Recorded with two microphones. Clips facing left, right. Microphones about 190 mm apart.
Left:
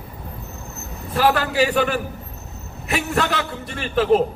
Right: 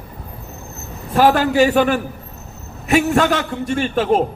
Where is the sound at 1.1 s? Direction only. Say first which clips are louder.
Right 5 dB; 45° right (ahead or behind).